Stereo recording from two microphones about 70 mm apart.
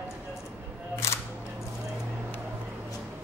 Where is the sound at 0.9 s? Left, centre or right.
Left.